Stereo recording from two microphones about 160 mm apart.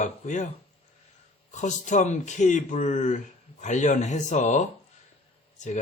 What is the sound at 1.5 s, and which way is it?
Speech, 50° left (ahead or behind).